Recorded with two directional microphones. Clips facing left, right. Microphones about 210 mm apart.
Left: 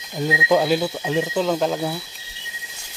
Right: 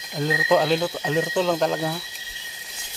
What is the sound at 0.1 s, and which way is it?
Speech, 10° left (ahead or behind).